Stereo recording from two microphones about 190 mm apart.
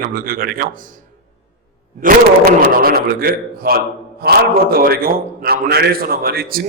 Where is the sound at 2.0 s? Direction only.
50° right (ahead or behind).